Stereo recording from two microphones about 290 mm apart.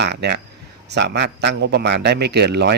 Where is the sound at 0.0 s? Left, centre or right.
Right.